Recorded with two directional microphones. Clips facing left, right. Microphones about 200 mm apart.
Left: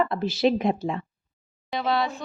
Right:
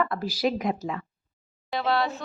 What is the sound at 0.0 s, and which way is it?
Speech, 25° left (ahead or behind).